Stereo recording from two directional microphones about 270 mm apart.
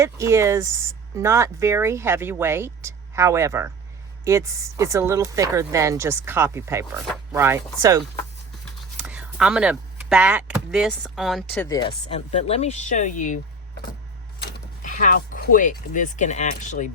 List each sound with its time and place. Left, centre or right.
0.0 s speech: centre
12.1 s speech: left
14.4 s speech: left